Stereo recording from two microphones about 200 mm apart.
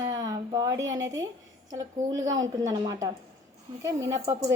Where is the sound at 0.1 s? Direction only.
20° right (ahead or behind).